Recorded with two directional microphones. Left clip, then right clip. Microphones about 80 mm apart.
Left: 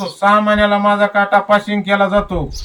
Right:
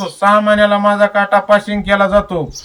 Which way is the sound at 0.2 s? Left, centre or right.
Centre.